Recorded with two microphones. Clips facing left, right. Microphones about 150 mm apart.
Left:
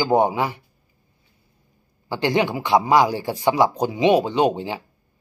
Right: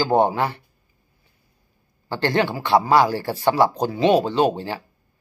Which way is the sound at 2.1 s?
15° left (ahead or behind).